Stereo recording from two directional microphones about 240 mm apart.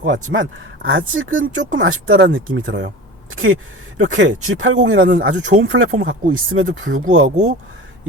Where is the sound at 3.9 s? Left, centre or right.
Right.